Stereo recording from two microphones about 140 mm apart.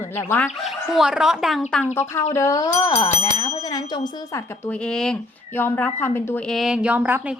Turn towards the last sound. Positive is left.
turn(degrees=-10)  # may be behind; listen again after turning